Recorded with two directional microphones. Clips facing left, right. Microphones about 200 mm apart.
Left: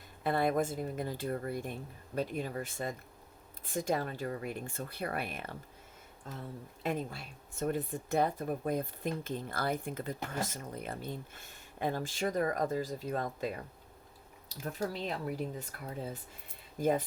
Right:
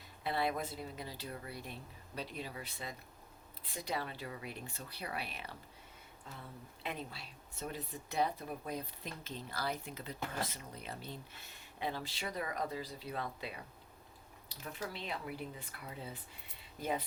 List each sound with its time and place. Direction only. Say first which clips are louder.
0.2 s speech: left 6 dB; 50° left (ahead or behind)